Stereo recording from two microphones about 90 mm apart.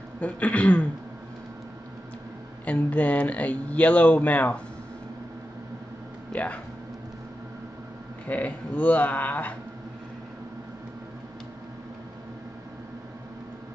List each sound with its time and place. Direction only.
0.2 s speech: 15° left (ahead or behind)
2.6 s speech: 15° left (ahead or behind)
6.3 s speech: 15° left (ahead or behind)
8.3 s speech: 20° left (ahead or behind)